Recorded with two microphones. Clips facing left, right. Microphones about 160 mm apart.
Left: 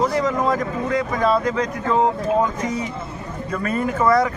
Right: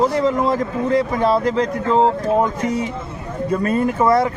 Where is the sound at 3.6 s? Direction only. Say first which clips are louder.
Right 2 dB; 30° right (ahead or behind).